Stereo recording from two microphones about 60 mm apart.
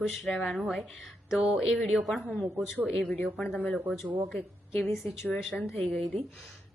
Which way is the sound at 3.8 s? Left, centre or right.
Right.